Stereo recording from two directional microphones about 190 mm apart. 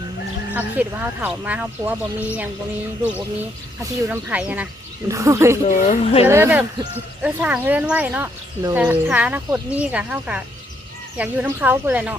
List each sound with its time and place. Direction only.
0.5 s speech: 10° right (ahead or behind)
4.1 s speech: 5° right (ahead or behind)
5.6 s speech: 45° left (ahead or behind)
6.2 s speech: 10° right (ahead or behind)